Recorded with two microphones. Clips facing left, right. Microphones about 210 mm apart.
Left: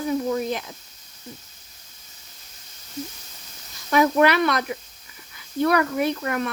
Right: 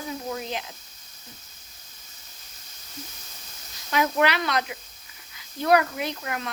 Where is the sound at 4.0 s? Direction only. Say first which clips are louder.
Left 5 dB; 50° left (ahead or behind).